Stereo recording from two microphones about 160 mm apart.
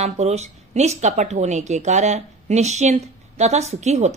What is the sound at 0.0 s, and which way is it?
Speech, 40° right (ahead or behind).